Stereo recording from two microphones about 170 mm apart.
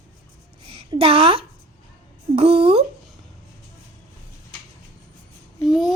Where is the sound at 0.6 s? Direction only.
35° right (ahead or behind).